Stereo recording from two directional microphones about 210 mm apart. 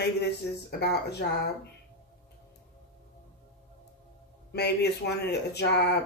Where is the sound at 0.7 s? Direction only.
50° left (ahead or behind).